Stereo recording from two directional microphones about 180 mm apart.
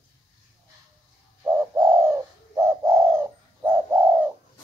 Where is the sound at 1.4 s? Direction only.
20° right (ahead or behind).